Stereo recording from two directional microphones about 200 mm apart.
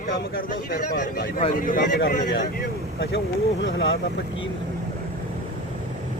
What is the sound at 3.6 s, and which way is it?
Speech, 70° left (ahead or behind).